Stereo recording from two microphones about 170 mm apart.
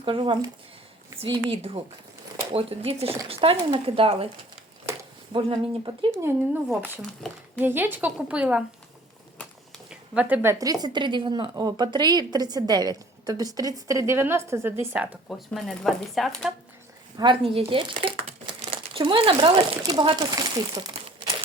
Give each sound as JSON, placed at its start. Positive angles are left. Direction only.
{"t": 0.0, "sound": "a woman's voice", "side_deg": -30}
{"t": 5.3, "sound": "a woman's voice", "side_deg": -30}
{"t": 7.2, "sound": "speech", "side_deg": 0}
{"t": 7.6, "sound": "a woman's voice", "side_deg": -10}
{"t": 9.9, "sound": "a woman's voice", "side_deg": -10}
{"t": 15.3, "sound": "speech", "side_deg": 0}
{"t": 17.2, "sound": "speech", "side_deg": -30}